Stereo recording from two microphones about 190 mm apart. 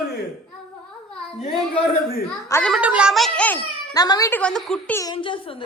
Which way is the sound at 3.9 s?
20° left (ahead or behind).